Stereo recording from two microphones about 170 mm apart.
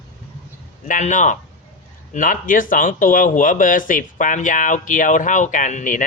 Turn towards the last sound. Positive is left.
turn(degrees=50)  # may be behind; listen again after turning